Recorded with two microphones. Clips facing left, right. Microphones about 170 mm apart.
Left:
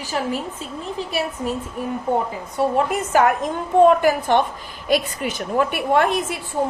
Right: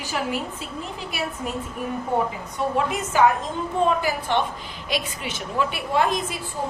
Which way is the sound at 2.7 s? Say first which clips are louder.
Left 3 dB; 55° left (ahead or behind).